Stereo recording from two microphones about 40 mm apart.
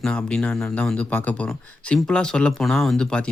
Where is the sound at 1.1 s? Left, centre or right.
Left.